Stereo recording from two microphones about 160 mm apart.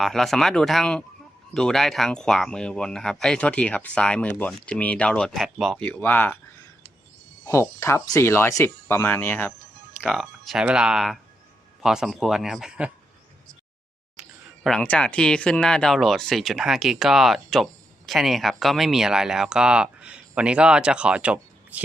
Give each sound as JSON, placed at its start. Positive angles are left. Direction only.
{"t": 0.0, "sound": "speech", "side_deg": 0}
{"t": 5.8, "sound": "speech", "side_deg": 10}
{"t": 7.4, "sound": "speech", "side_deg": 20}
{"t": 10.0, "sound": "speech", "side_deg": 0}
{"t": 14.2, "sound": "speech", "side_deg": 0}